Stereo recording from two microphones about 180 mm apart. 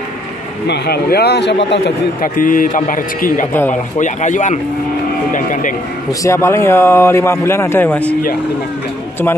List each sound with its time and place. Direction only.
0.7 s a man's voice: 60° left (ahead or behind)
2.2 s a man's voice: 50° left (ahead or behind)
6.2 s a man's voice: 15° left (ahead or behind)